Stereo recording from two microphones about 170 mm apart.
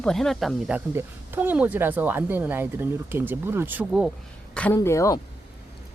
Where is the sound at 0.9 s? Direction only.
10° right (ahead or behind).